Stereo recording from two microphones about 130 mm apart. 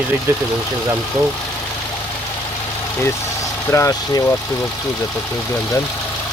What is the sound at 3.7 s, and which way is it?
Speech, 25° left (ahead or behind).